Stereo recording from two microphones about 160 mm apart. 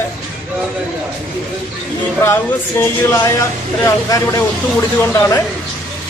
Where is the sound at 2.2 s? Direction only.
15° left (ahead or behind).